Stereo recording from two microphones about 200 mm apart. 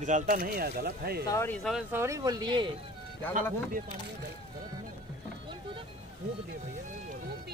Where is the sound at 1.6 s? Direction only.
Centre (ahead or behind).